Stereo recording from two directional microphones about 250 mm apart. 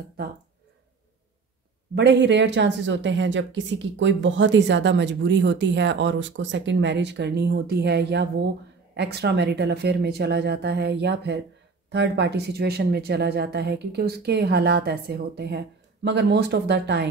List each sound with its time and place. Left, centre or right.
2.0 s a woman's voice: right